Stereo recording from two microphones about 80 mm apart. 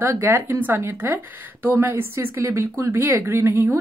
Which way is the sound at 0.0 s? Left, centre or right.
Right.